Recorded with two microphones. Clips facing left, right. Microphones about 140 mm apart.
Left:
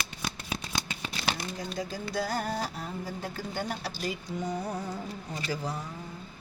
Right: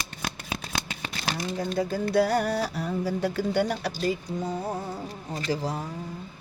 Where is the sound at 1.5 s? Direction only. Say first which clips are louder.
Right 8 dB; 55° right (ahead or behind).